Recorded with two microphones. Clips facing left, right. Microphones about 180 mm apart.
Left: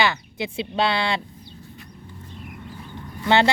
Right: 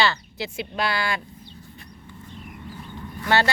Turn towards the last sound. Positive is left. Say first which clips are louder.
# left 3 dB
turn(degrees=20)  # may be behind; listen again after turning